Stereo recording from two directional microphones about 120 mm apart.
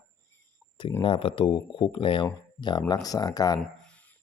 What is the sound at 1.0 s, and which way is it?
A man's voice, 50° left (ahead or behind).